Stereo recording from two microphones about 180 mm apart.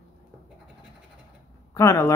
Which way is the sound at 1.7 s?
15° left (ahead or behind).